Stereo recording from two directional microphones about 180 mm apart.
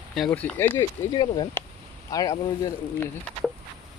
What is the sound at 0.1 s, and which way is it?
Speech, 5° left (ahead or behind).